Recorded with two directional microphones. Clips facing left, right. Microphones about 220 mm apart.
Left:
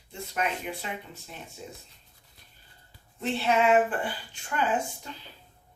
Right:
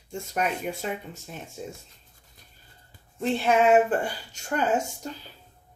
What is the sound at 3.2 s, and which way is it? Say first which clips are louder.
Speech: right 3 dB; 45° right (ahead or behind).